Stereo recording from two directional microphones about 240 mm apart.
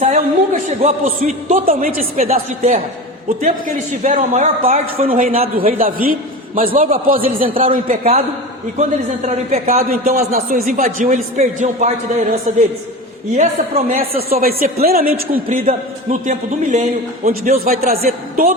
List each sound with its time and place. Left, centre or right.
0.0 s a man's voice: right
15.4 s a man's voice: right